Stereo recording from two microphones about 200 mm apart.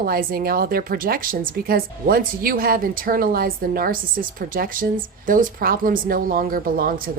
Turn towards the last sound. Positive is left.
turn(degrees=-45)  # may be behind; listen again after turning